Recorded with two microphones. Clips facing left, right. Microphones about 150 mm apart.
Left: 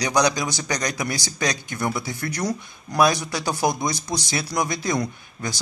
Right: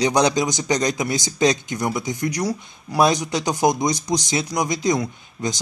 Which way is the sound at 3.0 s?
20° right (ahead or behind).